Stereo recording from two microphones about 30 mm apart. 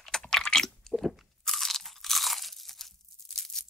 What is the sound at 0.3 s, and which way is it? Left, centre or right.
Squish, centre.